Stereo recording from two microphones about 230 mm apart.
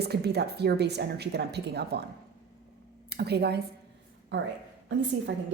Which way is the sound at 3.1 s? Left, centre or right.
Right.